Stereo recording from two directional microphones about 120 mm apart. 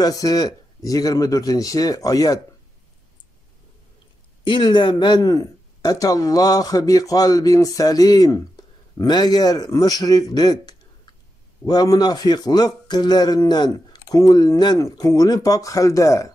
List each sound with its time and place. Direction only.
0.0 s speech: 30° left (ahead or behind)
4.5 s speech: 40° left (ahead or behind)